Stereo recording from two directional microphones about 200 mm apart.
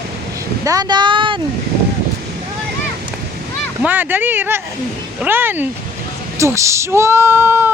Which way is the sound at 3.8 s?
10° right (ahead or behind).